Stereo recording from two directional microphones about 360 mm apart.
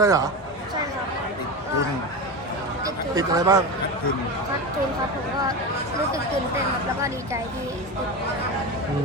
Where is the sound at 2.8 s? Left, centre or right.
Centre.